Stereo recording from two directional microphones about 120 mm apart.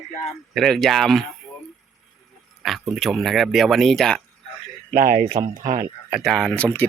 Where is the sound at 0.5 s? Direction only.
Centre (ahead or behind).